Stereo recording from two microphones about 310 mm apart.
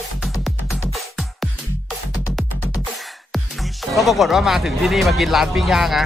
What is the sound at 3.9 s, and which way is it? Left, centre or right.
Speech, centre.